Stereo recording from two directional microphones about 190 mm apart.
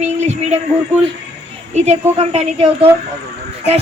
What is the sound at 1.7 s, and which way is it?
A woman's voice, 35° right (ahead or behind).